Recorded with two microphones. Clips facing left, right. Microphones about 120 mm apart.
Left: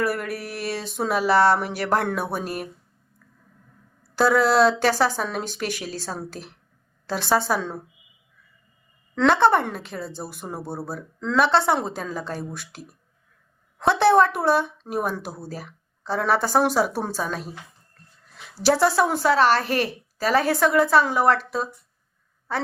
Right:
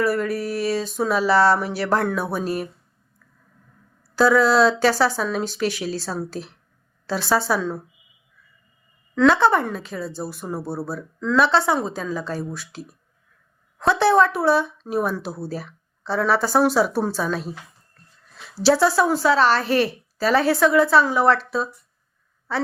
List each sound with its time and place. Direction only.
0.0 s a woman's voice: 55° left (ahead or behind)
4.1 s a woman's voice: 55° left (ahead or behind)
9.1 s a woman's voice: 55° left (ahead or behind)
18.6 s a woman's voice: 50° left (ahead or behind)